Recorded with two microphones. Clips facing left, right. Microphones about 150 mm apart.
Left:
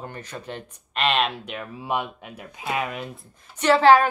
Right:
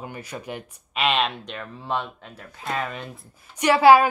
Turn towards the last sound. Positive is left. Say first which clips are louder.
# right 1 dB
turn(degrees=-10)  # may be behind; listen again after turning